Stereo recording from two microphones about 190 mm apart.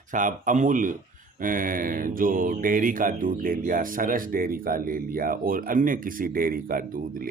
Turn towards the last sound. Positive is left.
turn(degrees=-50)  # may be behind; listen again after turning